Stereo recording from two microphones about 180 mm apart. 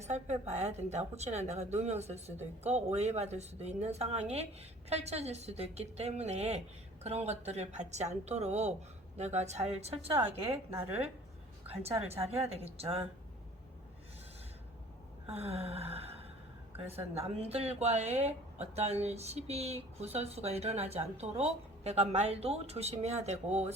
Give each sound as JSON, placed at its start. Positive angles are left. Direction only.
{"t": 0.0, "sound": "speech", "side_deg": -40}
{"t": 10.7, "sound": "a woman's voice", "side_deg": -10}
{"t": 11.8, "sound": "speech", "side_deg": -35}
{"t": 15.4, "sound": "speech", "side_deg": -35}